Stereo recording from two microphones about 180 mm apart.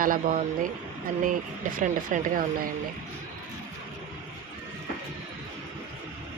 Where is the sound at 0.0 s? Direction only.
50° right (ahead or behind).